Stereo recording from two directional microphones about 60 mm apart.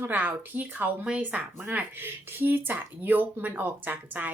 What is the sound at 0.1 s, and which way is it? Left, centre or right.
Speech, right.